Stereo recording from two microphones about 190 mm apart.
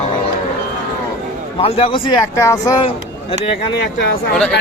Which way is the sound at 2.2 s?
15° left (ahead or behind).